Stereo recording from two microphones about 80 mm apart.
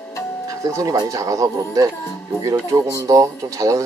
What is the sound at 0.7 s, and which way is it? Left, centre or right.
Speech, right.